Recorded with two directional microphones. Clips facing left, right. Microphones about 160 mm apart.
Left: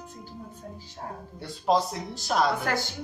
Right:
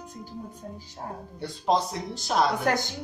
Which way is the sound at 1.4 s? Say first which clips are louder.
Left 1 dB; centre (ahead or behind).